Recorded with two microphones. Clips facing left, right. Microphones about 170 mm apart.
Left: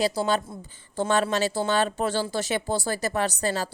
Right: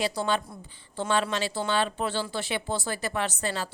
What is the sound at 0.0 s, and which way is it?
A woman's voice, 35° left (ahead or behind).